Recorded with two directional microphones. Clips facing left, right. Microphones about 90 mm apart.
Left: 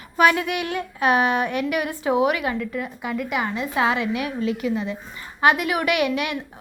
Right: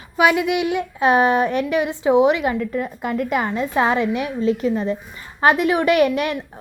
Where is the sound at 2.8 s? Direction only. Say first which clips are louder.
Right 4 dB; 40° right (ahead or behind).